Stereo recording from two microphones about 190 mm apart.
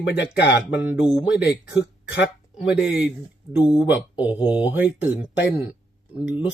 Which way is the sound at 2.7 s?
5° right (ahead or behind).